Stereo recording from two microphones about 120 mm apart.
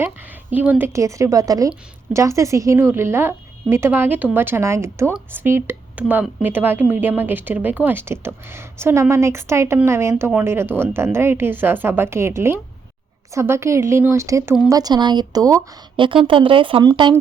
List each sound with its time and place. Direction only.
0.5 s a woman's voice: 15° right (ahead or behind)
0.9 s a woman's voice: 25° right (ahead or behind)
16.0 s speech: 45° right (ahead or behind)